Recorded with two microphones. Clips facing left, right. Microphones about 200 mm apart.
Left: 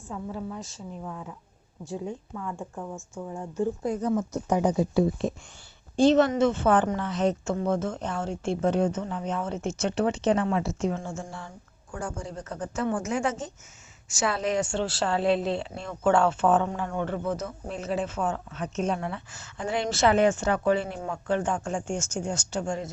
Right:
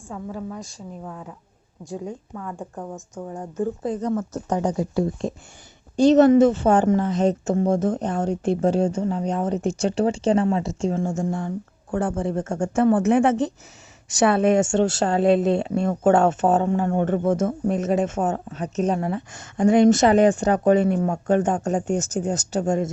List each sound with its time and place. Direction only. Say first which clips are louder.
0.1 s a woman's voice: right 2 dB; 45° right (ahead or behind)
2.0 s speech: right 2 dB; 40° right (ahead or behind)
3.8 s speech: right 2 dB; centre (ahead or behind)
6.0 s speech: right 6 dB; 40° right (ahead or behind)
11.0 s a woman's voice: right 11 dB; 45° right (ahead or behind)
11.9 s a woman's voice: right 11 dB; 60° right (ahead or behind); by 22.9 s 40° right (ahead or behind)